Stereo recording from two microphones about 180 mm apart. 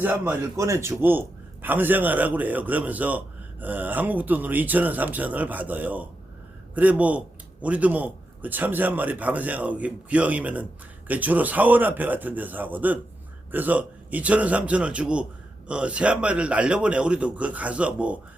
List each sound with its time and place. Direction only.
0.0 s a man's voice: 10° right (ahead or behind)